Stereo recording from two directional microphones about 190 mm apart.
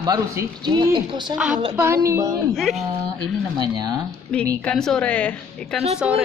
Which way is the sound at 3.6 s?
20° right (ahead or behind).